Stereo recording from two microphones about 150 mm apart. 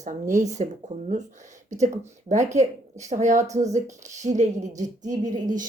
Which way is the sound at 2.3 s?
50° right (ahead or behind).